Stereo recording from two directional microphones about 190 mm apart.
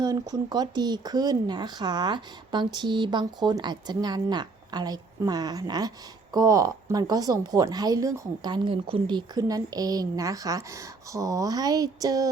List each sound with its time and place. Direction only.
0.0 s a woman's voice: 20° right (ahead or behind)